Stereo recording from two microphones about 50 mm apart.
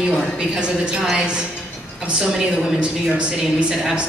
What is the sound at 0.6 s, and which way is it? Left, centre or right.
A woman's voice, centre.